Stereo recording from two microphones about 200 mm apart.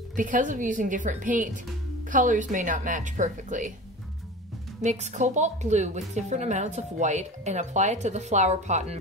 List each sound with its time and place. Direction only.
0.1 s a woman's voice: 40° right (ahead or behind)
4.8 s a woman's voice: 35° right (ahead or behind)